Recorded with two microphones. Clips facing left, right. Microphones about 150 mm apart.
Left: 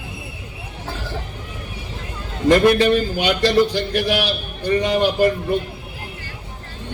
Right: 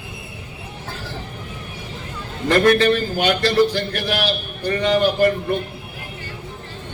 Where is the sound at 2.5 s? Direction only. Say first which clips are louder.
Left 1 dB; 15° left (ahead or behind).